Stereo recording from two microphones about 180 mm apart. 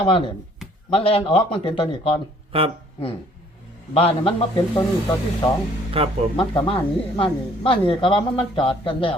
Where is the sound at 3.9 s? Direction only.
30° left (ahead or behind).